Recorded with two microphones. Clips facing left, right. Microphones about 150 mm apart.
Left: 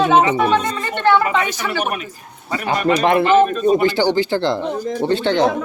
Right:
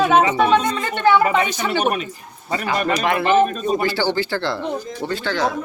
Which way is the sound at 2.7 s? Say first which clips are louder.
Left 5 dB; 25° left (ahead or behind).